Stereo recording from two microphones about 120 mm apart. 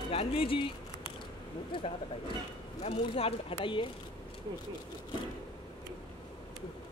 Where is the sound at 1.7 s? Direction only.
40° left (ahead or behind).